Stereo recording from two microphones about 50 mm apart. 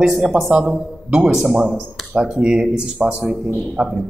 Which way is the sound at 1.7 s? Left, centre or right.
Centre.